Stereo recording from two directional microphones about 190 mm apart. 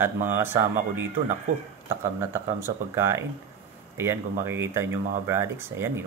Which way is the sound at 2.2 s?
15° right (ahead or behind).